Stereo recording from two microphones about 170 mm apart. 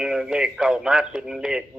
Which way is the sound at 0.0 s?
5° right (ahead or behind).